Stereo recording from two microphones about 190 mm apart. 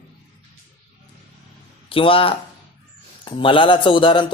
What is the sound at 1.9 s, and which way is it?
A man's voice, 30° left (ahead or behind).